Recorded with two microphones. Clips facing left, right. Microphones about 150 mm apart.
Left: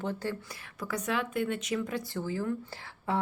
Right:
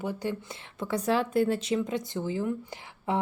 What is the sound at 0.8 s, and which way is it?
A woman's voice, 30° right (ahead or behind).